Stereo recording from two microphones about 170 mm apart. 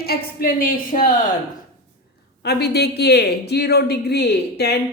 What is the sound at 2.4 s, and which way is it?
Speech, 75° left (ahead or behind).